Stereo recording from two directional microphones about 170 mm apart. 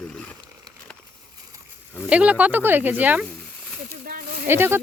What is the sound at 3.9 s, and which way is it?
Speech, 55° right (ahead or behind).